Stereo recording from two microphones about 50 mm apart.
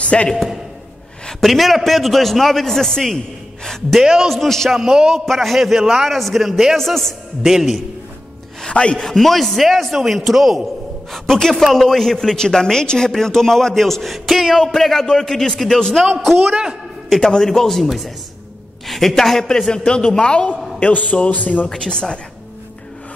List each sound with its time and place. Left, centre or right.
0.0 s a man's voice: left
1.4 s a man's voice: centre
4.0 s a man's voice: centre
4.3 s a man's voice: centre
4.6 s a man's voice: centre
5.1 s a man's voice: centre
7.4 s a man's voice: centre
8.6 s chopping: left
9.0 s a man's voice: centre
11.2 s a woman's voice: centre
20.8 s a man's voice: left
21.6 s a woman's voice: centre